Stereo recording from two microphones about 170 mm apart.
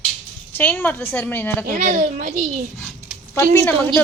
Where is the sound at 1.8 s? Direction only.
50° right (ahead or behind).